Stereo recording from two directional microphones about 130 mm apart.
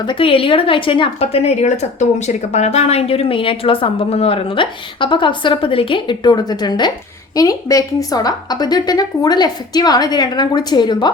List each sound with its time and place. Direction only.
0.0 s a woman's voice: 40° left (ahead or behind)